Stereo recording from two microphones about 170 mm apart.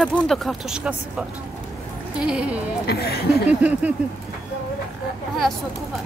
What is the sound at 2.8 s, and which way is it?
Speech, 70° left (ahead or behind).